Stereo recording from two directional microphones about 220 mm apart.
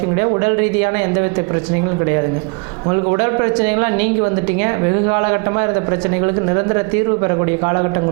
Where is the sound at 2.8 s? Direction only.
25° right (ahead or behind).